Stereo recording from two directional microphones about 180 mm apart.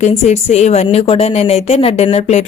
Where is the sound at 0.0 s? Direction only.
40° left (ahead or behind).